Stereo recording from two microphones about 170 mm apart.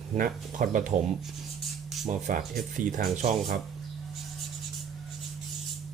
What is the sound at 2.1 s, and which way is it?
Speech, 55° right (ahead or behind).